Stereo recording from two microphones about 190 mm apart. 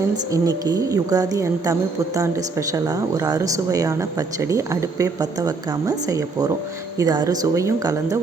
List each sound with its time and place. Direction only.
0.3 s a woman's voice: 20° right (ahead or behind)